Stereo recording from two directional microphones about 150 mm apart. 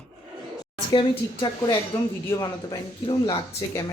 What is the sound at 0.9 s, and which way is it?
Speech, 35° left (ahead or behind).